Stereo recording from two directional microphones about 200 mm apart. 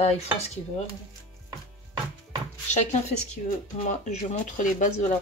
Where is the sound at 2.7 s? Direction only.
35° left (ahead or behind).